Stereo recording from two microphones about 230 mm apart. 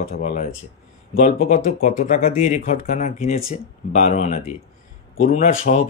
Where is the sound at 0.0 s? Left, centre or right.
Left.